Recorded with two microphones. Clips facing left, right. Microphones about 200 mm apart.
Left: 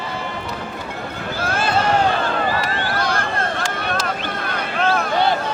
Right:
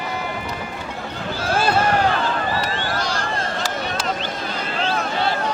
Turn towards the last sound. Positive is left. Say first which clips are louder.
# left 3 dB
turn(degrees=60)  # may be behind; listen again after turning